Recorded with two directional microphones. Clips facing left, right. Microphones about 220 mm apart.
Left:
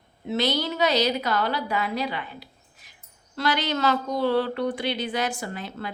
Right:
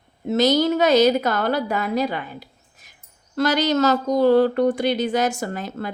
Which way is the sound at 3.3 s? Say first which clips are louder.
Right 7 dB; 45° right (ahead or behind).